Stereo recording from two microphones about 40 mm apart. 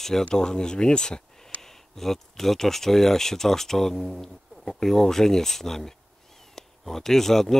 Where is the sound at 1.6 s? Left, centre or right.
Centre.